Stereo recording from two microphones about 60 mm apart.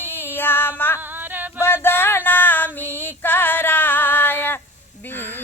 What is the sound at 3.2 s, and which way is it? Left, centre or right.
Female singing, left.